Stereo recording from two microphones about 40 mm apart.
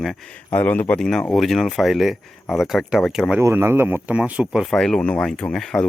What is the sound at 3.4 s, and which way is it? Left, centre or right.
Speech, right.